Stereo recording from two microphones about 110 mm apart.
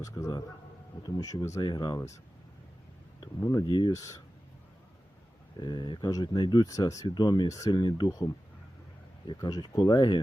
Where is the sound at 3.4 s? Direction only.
35° left (ahead or behind).